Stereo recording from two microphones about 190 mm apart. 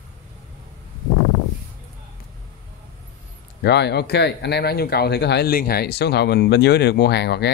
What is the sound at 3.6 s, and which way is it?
Speech, 60° left (ahead or behind).